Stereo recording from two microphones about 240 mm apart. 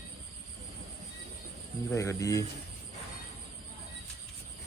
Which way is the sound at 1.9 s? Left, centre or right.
Centre.